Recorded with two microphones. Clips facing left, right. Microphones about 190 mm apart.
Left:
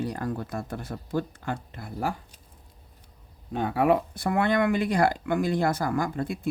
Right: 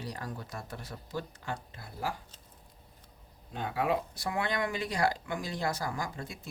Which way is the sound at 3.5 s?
60° left (ahead or behind).